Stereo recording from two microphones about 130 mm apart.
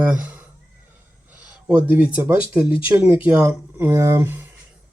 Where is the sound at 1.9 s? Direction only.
10° right (ahead or behind).